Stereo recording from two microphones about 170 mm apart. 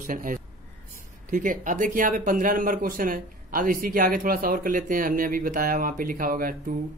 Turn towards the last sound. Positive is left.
turn(degrees=-55)  # may be behind; listen again after turning